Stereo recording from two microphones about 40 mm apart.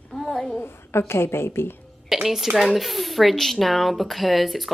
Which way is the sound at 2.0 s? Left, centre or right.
Centre.